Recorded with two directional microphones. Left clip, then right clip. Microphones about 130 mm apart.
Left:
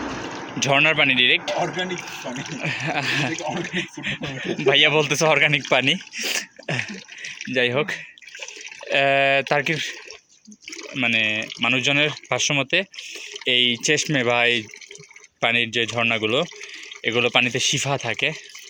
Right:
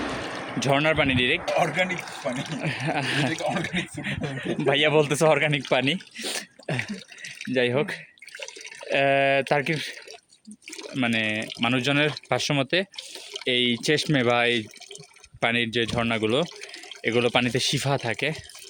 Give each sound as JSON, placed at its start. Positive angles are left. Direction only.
{"t": 0.1, "sound": "speech", "side_deg": -30}
{"t": 5.4, "sound": "speech", "side_deg": -20}
{"t": 5.6, "sound": "speech", "side_deg": -10}
{"t": 6.8, "sound": "water", "side_deg": -35}
{"t": 7.6, "sound": "speech", "side_deg": -25}
{"t": 11.0, "sound": "speech", "side_deg": -40}